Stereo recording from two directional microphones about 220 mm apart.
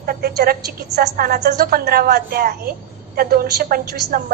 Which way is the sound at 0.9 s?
45° right (ahead or behind).